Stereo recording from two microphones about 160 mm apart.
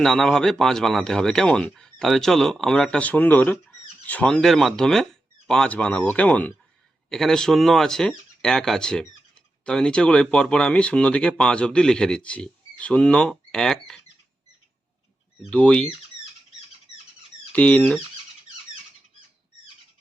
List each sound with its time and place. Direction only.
0.0 s speech: 5° left (ahead or behind)
15.4 s speech: 5° left (ahead or behind)
16.9 s squeak: 35° left (ahead or behind)
17.5 s speech: 10° left (ahead or behind)